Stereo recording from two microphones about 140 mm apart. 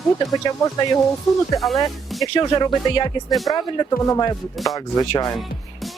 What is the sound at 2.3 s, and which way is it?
Speech, 30° left (ahead or behind).